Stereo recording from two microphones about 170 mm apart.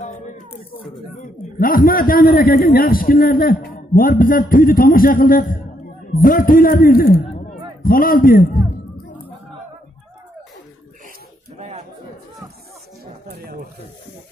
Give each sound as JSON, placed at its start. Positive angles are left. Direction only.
{"t": 1.6, "sound": "a man's voice", "side_deg": 55}
{"t": 13.0, "sound": "chatter", "side_deg": -65}